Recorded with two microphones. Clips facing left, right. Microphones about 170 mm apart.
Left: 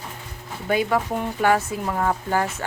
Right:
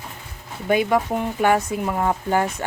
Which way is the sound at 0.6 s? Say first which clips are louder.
Right 3 dB; 15° right (ahead or behind).